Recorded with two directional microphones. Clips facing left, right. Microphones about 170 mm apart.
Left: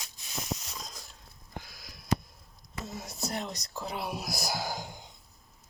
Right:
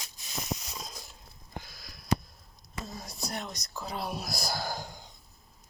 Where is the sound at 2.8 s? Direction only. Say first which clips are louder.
Left 3 dB; 25° left (ahead or behind).